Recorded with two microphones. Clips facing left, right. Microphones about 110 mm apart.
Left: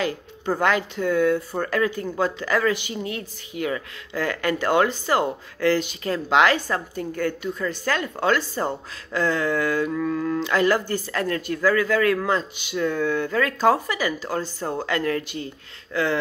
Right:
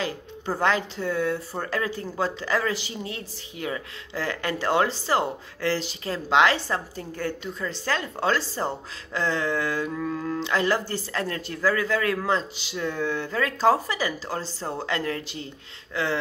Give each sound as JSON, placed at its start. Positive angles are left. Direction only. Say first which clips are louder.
{"t": 0.6, "sound": "a man's voice", "louder": "left 1 dB", "side_deg": -30}